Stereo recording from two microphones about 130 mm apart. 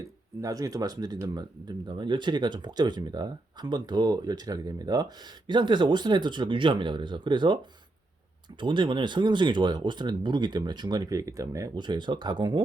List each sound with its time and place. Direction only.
0.4 s speech: 30° right (ahead or behind)
8.6 s speech: 35° right (ahead or behind)